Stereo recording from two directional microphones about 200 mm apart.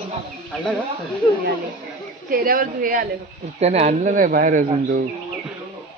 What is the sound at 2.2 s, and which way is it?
Speech, 45° right (ahead or behind).